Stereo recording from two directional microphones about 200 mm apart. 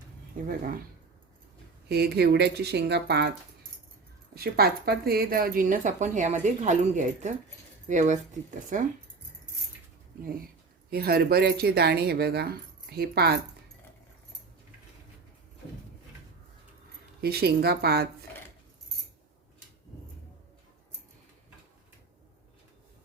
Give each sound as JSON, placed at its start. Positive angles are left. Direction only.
{"t": 0.4, "sound": "speech", "side_deg": -45}
{"t": 1.9, "sound": "speech", "side_deg": -55}
{"t": 4.4, "sound": "speech", "side_deg": -50}
{"t": 10.8, "sound": "speech", "side_deg": -50}
{"t": 17.2, "sound": "speech", "side_deg": -50}